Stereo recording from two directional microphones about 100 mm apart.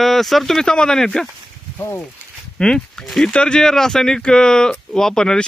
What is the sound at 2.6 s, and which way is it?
Speech, 5° left (ahead or behind).